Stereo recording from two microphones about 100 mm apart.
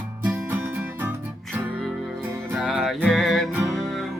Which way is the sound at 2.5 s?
Centre (ahead or behind).